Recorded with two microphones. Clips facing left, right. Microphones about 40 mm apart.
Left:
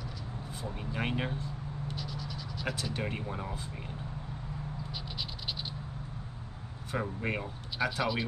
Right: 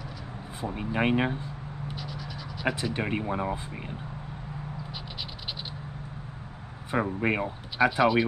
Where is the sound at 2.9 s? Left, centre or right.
Right.